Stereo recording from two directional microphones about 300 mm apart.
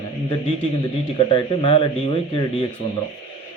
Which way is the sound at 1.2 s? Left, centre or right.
Centre.